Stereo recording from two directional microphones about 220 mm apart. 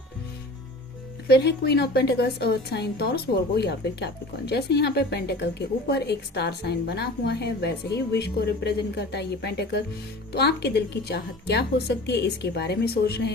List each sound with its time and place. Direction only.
1.3 s a woman's voice: 50° left (ahead or behind)